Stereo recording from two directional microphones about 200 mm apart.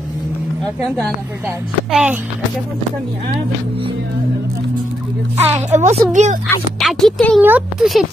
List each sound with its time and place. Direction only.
1.9 s speech: centre (ahead or behind)
5.7 s speech: 35° right (ahead or behind)
6.4 s speech: centre (ahead or behind)